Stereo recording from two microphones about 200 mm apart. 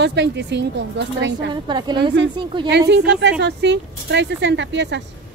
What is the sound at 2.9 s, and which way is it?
A woman's voice, 60° right (ahead or behind).